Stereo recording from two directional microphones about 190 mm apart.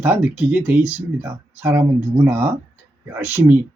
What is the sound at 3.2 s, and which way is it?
Speech, 10° right (ahead or behind).